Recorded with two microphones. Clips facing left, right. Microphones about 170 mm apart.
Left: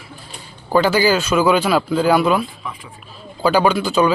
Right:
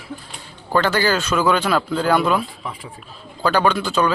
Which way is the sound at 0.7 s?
10° left (ahead or behind).